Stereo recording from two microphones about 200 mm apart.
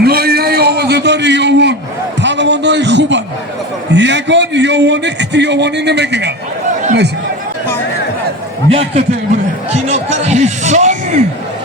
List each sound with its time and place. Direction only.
0.0 s a sound: 50° right (ahead or behind)
3.9 s a man's voice: 60° right (ahead or behind)
8.7 s a man's voice: 30° right (ahead or behind)
9.7 s music: 35° right (ahead or behind)